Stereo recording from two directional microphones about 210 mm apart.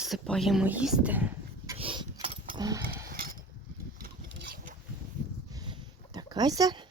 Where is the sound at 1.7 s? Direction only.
25° right (ahead or behind).